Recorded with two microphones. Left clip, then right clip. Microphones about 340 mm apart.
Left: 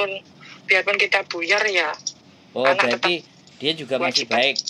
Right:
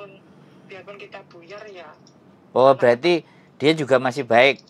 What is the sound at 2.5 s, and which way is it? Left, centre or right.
A man's voice, right.